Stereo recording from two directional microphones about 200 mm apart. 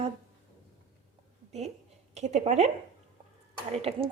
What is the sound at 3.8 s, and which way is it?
Speech, 30° right (ahead or behind).